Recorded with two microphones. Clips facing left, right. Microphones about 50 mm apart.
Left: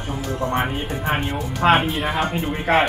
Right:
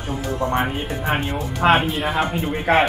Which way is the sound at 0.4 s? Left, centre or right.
Right.